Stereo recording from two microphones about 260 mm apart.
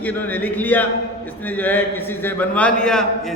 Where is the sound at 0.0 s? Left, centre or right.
Centre.